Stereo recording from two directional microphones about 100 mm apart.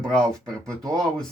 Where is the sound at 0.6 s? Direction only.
35° right (ahead or behind).